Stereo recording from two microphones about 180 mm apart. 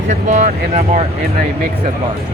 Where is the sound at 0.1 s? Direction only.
40° right (ahead or behind).